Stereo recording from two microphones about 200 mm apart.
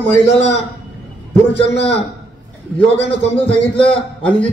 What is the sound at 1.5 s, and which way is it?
Speech, 30° left (ahead or behind).